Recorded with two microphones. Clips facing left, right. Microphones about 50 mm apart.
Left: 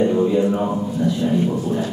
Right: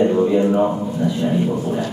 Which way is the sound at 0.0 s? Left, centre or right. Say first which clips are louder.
Right 1 dB; centre.